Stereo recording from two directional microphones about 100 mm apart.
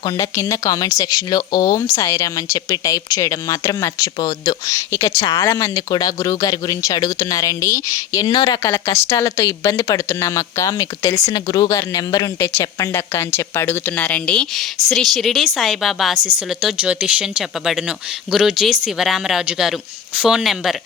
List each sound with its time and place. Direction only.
0.2 s speech: 30° left (ahead or behind)
8.3 s speech: 45° left (ahead or behind)
8.6 s speech: 25° left (ahead or behind)
9.1 s speech: 35° left (ahead or behind)
12.4 s speech: 25° left (ahead or behind); by 20.7 s centre (ahead or behind)